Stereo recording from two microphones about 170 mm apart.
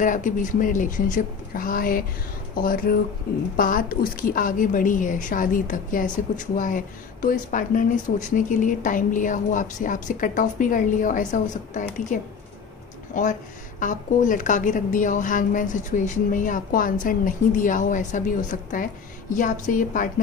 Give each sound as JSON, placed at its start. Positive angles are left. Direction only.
{"t": 0.0, "sound": "a woman's voice", "side_deg": 50}